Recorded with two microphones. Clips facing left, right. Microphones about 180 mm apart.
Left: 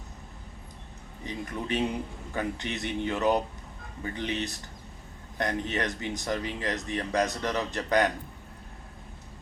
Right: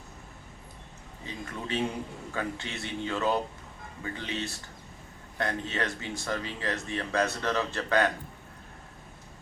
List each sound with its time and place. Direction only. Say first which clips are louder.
1.2 s a man's voice: left 3 dB; 15° left (ahead or behind)